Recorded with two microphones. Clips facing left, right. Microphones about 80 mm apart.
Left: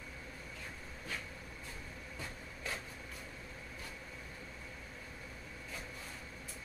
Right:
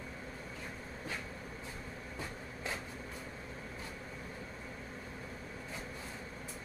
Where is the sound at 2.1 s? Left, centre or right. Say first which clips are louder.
Right 3 dB; right.